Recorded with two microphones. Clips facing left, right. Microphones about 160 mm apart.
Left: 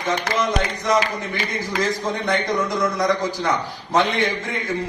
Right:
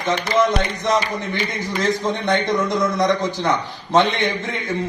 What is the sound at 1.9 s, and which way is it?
A man's voice, 25° right (ahead or behind).